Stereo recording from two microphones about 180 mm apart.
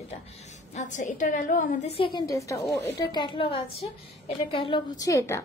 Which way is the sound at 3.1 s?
25° left (ahead or behind).